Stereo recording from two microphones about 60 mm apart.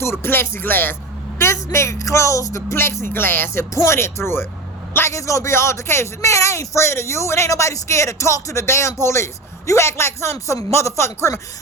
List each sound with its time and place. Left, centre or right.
0.0 s music: left
1.4 s a woman's voice: left
2.6 s speech: left
5.1 s speech: left